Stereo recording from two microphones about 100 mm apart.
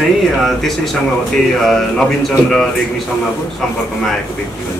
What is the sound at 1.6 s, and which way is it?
A man's voice, centre (ahead or behind).